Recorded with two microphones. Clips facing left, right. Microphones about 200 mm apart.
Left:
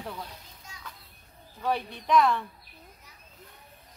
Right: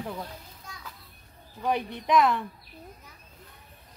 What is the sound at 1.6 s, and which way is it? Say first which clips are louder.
Speech: right 2 dB; 15° right (ahead or behind).